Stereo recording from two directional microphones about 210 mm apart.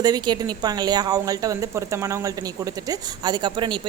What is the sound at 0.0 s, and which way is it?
A woman's voice, 20° right (ahead or behind).